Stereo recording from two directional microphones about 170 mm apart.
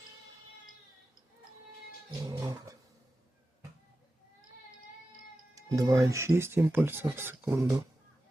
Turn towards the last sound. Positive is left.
turn(degrees=-15)  # may be behind; listen again after turning